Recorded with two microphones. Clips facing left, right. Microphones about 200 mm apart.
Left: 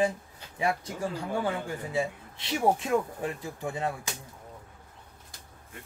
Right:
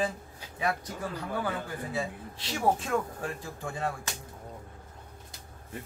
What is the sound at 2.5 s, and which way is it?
Speech, 20° left (ahead or behind).